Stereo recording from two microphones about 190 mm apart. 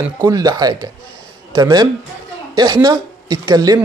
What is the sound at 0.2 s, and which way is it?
A man's voice, 20° right (ahead or behind).